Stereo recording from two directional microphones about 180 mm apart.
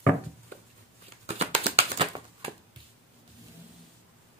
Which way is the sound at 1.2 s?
35° right (ahead or behind).